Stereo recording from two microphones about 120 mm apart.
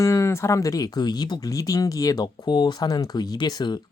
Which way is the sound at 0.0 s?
25° left (ahead or behind).